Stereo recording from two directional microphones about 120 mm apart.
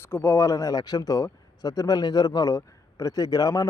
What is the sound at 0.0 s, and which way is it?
Speech, 20° left (ahead or behind).